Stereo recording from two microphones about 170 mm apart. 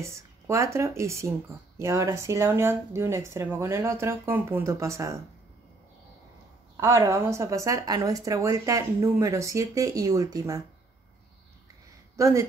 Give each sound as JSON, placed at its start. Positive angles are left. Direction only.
{"t": 0.0, "sound": "speech", "side_deg": -15}
{"t": 6.8, "sound": "a woman's voice", "side_deg": -20}
{"t": 12.2, "sound": "speech", "side_deg": -15}